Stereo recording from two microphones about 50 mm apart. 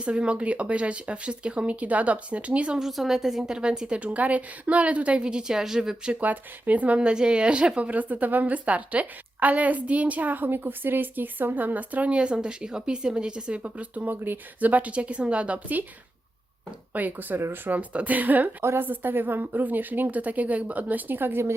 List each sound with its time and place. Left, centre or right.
0.0 s speech: right
2.7 s a woman's voice: centre
6.1 s speech: right
7.1 s speech: centre
7.9 s a woman's voice: right
16.9 s a woman's voice: right